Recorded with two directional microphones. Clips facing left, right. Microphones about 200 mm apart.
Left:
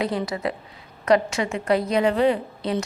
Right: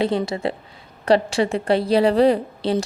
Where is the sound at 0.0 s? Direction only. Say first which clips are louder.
Right 4 dB; 25° right (ahead or behind).